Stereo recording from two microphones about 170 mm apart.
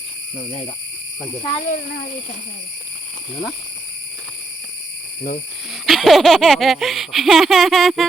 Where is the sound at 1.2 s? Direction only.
15° left (ahead or behind).